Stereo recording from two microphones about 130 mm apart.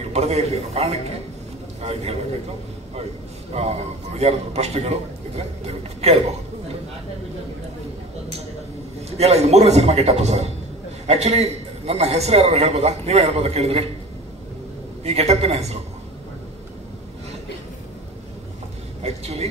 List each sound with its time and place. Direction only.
0.1 s a man's voice: 55° right (ahead or behind)
3.5 s a man's voice: 55° right (ahead or behind)
9.2 s a man's voice: 55° right (ahead or behind)
15.0 s a man's voice: 55° right (ahead or behind)
19.0 s a man's voice: 55° right (ahead or behind)